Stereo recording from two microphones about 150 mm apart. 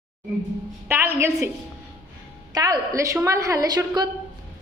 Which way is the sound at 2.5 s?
25° right (ahead or behind).